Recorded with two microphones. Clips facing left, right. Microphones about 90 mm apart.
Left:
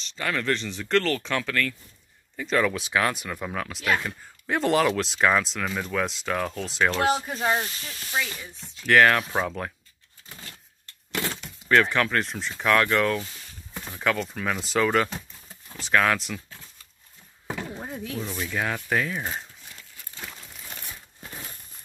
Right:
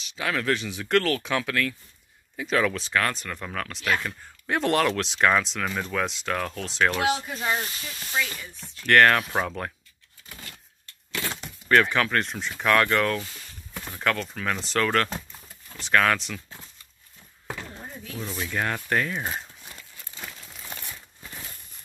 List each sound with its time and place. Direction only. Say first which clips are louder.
0.0 s speech: right 1 dB; 5° right (ahead or behind)
2.7 s speech: left 1 dB; 10° left (ahead or behind)
7.2 s speech: left 3 dB; 35° left (ahead or behind)
8.1 s chopping: even; 20° left (ahead or behind)
8.8 s speech: even; centre (ahead or behind)
11.7 s speech: even; centre (ahead or behind)
17.8 s a sound: left 6 dB; 65° left (ahead or behind)
18.2 s speech: right 2 dB; centre (ahead or behind)